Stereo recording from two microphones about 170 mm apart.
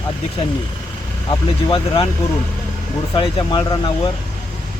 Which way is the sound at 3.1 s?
30° left (ahead or behind).